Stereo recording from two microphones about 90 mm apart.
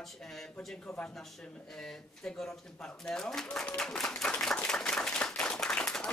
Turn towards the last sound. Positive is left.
turn(degrees=10)  # may be behind; listen again after turning